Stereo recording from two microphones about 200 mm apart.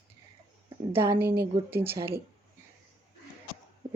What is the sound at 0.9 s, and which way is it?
Speech, 10° right (ahead or behind).